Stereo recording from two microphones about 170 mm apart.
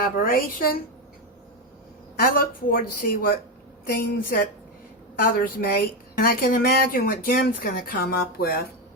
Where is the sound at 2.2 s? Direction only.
55° left (ahead or behind).